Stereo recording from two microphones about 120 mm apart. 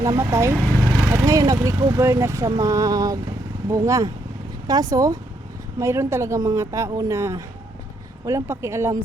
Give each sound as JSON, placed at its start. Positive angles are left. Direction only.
{"t": 0.0, "sound": "speech", "side_deg": -25}